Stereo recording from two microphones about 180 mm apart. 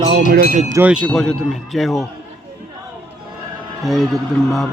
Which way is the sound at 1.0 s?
5° left (ahead or behind).